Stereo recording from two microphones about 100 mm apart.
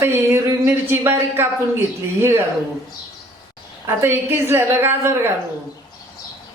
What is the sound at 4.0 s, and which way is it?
Speech, 25° right (ahead or behind).